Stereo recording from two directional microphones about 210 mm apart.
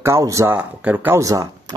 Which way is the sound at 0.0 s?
15° right (ahead or behind).